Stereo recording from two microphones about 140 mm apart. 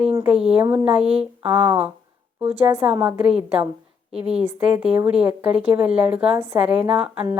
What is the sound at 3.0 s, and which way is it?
Speech, 10° right (ahead or behind).